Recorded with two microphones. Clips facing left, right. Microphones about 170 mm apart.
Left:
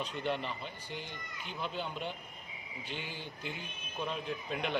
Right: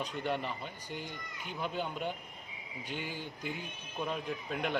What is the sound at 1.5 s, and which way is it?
Speech, 10° right (ahead or behind).